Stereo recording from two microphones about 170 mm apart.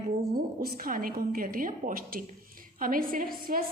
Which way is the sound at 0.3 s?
60° right (ahead or behind).